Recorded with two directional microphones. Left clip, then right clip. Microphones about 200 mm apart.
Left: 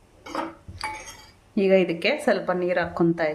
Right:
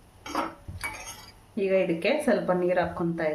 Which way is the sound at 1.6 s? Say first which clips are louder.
Left 4 dB; 55° left (ahead or behind).